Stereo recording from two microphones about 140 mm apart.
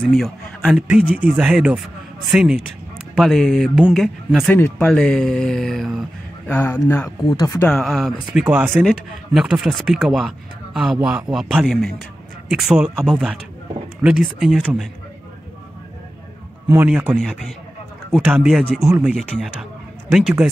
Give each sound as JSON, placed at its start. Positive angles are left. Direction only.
{"t": 0.0, "sound": "a man's voice", "side_deg": 0}
{"t": 4.5, "sound": "a man's voice", "side_deg": 15}
{"t": 6.4, "sound": "speech", "side_deg": 15}
{"t": 6.9, "sound": "speech", "side_deg": 25}
{"t": 7.6, "sound": "a man's voice", "side_deg": 0}
{"t": 16.6, "sound": "speech", "side_deg": -15}
{"t": 17.2, "sound": "a man's voice", "side_deg": 0}